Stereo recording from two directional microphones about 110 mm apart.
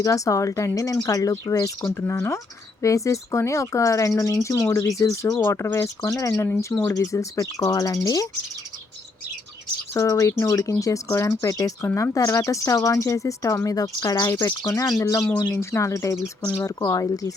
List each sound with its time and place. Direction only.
0.0 s speech: 30° left (ahead or behind)
9.9 s speech: 30° left (ahead or behind)
14.3 s speech: 20° left (ahead or behind)
14.8 s speech: 30° left (ahead or behind)
15.2 s speech: 10° left (ahead or behind)
15.7 s speech: 25° left (ahead or behind)